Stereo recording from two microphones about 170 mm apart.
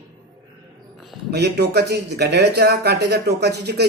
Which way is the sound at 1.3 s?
75° right (ahead or behind).